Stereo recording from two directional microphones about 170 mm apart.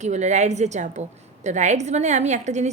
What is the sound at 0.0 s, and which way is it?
A woman's voice, 45° right (ahead or behind).